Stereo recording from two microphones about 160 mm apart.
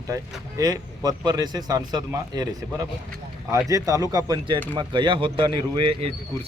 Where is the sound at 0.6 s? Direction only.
25° right (ahead or behind).